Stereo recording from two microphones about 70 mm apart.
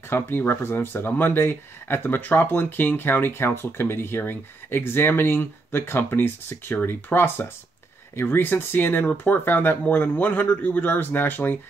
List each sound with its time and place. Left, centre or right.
0.1 s speech: left